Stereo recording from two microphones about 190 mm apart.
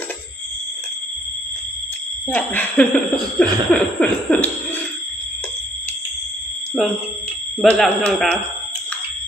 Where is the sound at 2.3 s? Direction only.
10° left (ahead or behind).